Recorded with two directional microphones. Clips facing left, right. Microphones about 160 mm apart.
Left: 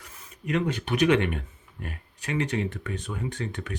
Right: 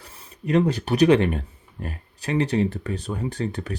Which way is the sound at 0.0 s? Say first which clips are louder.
Right 5 dB; 30° right (ahead or behind).